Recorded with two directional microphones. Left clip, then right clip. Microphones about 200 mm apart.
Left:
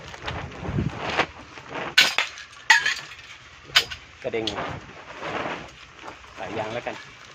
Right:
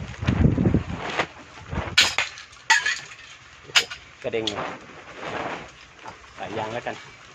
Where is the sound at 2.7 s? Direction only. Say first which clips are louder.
Left 2 dB; 15° left (ahead or behind).